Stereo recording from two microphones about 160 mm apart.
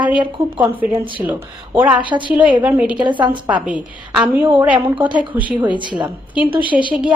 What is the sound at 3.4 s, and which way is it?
A woman's voice, 10° right (ahead or behind).